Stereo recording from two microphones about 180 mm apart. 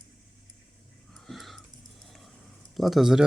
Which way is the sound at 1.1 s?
Centre (ahead or behind).